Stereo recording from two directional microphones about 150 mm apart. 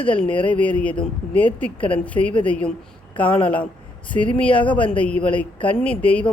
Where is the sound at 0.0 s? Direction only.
10° left (ahead or behind).